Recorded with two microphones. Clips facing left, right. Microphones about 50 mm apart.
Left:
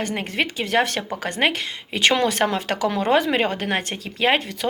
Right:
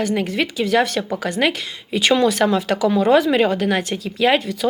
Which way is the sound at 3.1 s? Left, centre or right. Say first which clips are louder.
Right 3 dB; left.